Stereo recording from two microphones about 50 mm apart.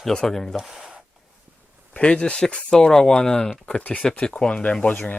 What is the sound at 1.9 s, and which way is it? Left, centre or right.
Speech, left.